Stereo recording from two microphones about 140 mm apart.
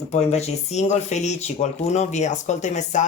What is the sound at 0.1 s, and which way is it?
Speech, 50° left (ahead or behind).